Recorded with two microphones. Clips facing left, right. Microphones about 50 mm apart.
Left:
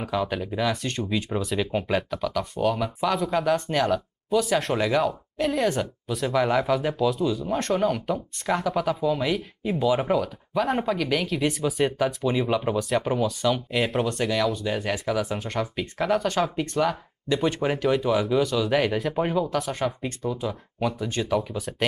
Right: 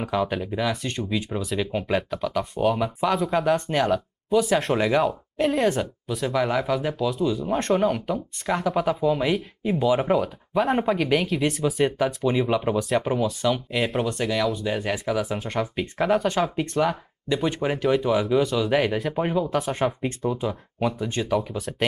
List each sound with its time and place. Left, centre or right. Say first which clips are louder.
0.0 s speech: right 2 dB; centre
2.5 s speech: right 3 dB; centre
4.5 s speech: right 2 dB; centre
7.3 s speech: right 2 dB; right
7.7 s speech: right 2 dB; centre
10.9 s speech: right 3 dB; right
11.1 s speech: right 2 dB; centre
19.7 s speech: right 3 dB; right
20.4 s speech: right 2 dB; centre